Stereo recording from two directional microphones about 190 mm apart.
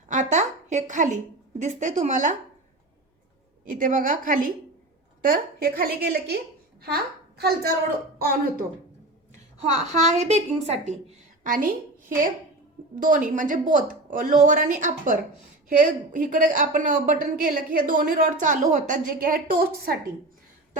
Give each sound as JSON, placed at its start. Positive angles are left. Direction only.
{"t": 0.1, "sound": "a woman's voice", "side_deg": -40}
{"t": 3.7, "sound": "a woman's voice", "side_deg": -45}
{"t": 9.3, "sound": "a woman's voice", "side_deg": -35}